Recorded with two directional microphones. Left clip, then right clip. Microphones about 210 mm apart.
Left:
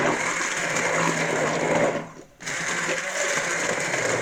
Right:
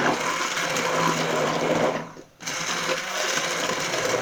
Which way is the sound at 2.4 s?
5° left (ahead or behind).